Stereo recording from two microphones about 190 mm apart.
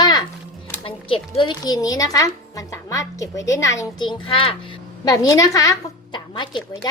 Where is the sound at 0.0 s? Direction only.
20° left (ahead or behind).